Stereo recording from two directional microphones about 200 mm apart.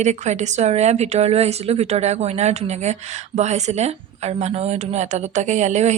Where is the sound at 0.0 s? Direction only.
35° right (ahead or behind).